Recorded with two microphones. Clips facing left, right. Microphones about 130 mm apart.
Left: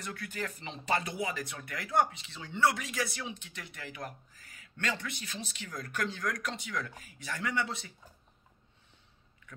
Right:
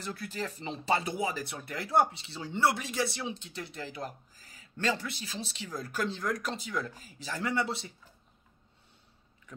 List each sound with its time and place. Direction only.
0.0 s speech: 30° right (ahead or behind)